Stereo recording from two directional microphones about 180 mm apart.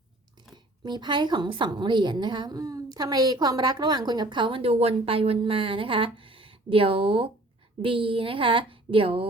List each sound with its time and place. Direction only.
0.5 s speech: 25° right (ahead or behind)